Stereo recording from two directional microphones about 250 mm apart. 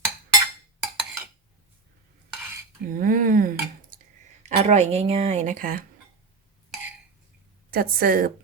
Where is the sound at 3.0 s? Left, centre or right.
Right.